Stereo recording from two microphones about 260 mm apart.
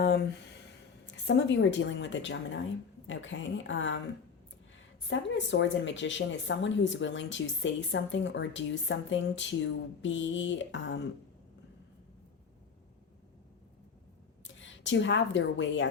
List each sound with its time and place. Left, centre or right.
0.0 s a sound: left
1.0 s speech: left
5.0 s speech: left
14.4 s speech: left